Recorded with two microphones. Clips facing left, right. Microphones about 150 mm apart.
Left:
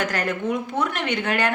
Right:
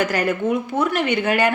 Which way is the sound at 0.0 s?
10° right (ahead or behind).